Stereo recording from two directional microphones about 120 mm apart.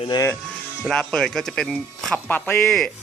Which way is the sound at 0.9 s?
5° left (ahead or behind).